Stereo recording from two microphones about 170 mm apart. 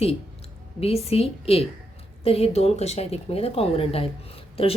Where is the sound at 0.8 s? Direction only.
35° left (ahead or behind).